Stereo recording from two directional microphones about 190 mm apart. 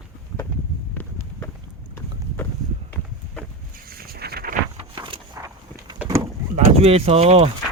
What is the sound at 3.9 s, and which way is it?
Vehicle, 50° right (ahead or behind).